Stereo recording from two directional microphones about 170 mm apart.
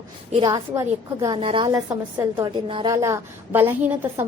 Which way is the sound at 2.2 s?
20° right (ahead or behind).